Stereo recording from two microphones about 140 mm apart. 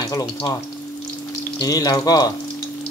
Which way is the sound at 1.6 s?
25° left (ahead or behind).